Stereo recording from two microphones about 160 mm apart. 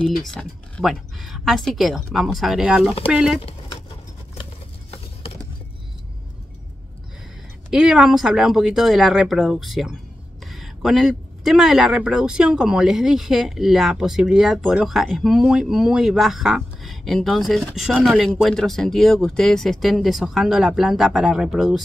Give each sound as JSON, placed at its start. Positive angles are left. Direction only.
{"t": 0.3, "sound": "speech", "side_deg": 5}
{"t": 3.3, "sound": "a sound", "side_deg": 35}
{"t": 7.7, "sound": "speech", "side_deg": -5}